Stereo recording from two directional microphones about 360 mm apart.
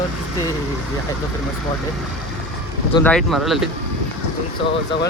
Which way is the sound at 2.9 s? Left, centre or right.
Centre.